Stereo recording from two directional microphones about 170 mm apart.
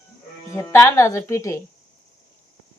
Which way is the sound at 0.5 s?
15° left (ahead or behind).